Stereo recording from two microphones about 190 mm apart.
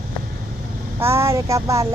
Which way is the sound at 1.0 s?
15° right (ahead or behind).